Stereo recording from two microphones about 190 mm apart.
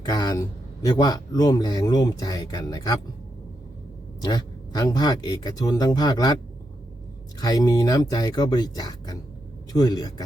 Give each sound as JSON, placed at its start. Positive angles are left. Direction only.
{"t": 0.0, "sound": "speech", "side_deg": 20}
{"t": 4.2, "sound": "speech", "side_deg": 20}
{"t": 7.3, "sound": "speech", "side_deg": 20}